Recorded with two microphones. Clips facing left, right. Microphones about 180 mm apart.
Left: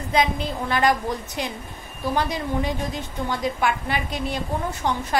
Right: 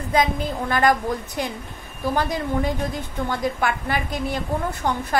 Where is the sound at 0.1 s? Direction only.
45° right (ahead or behind).